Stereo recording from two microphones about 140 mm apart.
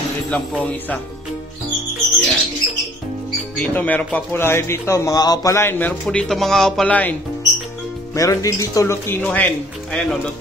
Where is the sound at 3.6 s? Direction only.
10° left (ahead or behind).